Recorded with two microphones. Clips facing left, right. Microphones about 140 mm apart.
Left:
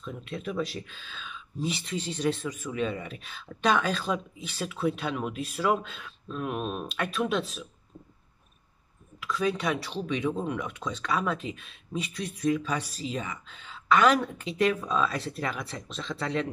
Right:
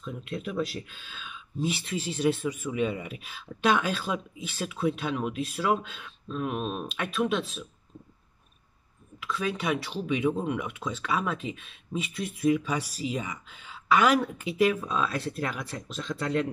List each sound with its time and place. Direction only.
0.0 s speech: 5° right (ahead or behind)
9.2 s speech: centre (ahead or behind)